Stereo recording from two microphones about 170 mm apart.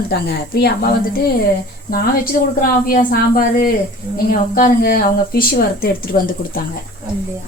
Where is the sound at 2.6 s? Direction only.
55° left (ahead or behind).